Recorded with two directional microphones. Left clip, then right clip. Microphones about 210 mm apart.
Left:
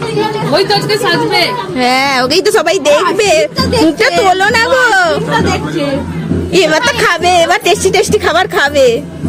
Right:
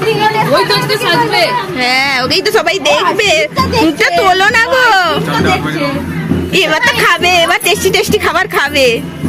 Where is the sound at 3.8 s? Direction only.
15° left (ahead or behind).